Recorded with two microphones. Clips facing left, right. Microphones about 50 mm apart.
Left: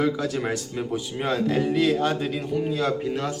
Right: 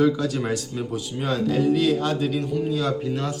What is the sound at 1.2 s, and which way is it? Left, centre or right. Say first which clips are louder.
A man's voice: right 1 dB; left.